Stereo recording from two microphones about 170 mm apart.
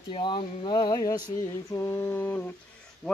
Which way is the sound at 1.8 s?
10° left (ahead or behind).